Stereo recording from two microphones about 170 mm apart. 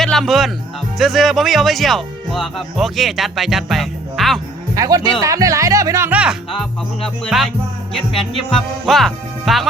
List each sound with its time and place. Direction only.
0.0 s speech: centre (ahead or behind)
4.7 s speech: 20° right (ahead or behind); by 9.6 s centre (ahead or behind)